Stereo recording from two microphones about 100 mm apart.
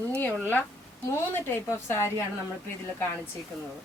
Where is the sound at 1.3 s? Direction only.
25° left (ahead or behind).